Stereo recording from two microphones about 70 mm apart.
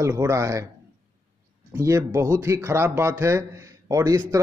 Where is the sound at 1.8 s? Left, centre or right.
Right.